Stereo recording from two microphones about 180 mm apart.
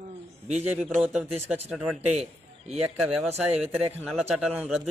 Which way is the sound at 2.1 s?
35° right (ahead or behind).